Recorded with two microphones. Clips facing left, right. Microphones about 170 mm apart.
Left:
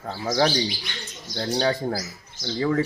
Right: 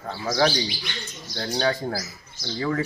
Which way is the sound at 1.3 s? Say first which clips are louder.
Left 1 dB; 20° left (ahead or behind).